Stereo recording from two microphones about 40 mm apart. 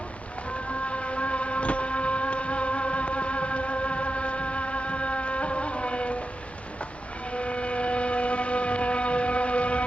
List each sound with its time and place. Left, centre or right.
0.9 s music: left
7.3 s vehicle: left